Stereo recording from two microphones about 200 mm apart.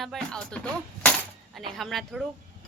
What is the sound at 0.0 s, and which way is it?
Speech, centre (ahead or behind).